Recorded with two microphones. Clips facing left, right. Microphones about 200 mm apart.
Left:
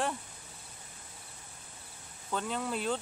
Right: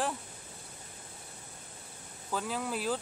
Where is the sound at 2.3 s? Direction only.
5° right (ahead or behind).